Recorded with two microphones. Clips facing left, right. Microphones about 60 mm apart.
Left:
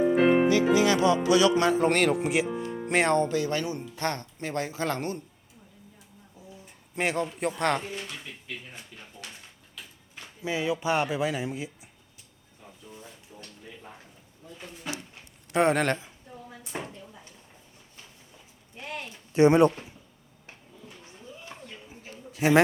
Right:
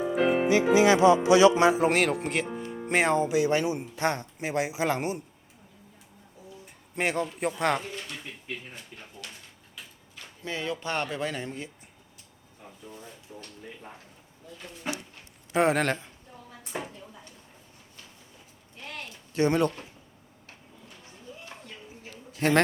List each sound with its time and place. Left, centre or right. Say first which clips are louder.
0.4 s music: right 1 dB; right
1.8 s speech: left 1 dB; centre
3.3 s a man's voice: right 3 dB; centre
6.9 s speech: even; centre
10.4 s speech: left 5 dB; centre
13.0 s a sound: right 2 dB; centre
14.8 s a sound: right 2 dB; right
15.5 s speech: left 1 dB; centre
16.7 s chopping: right 1 dB; centre
18.8 s a sound: left 3 dB; centre
22.4 s a man's voice: left 2 dB; centre